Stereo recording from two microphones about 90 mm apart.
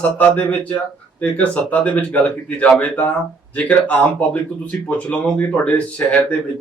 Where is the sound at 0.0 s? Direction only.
15° left (ahead or behind).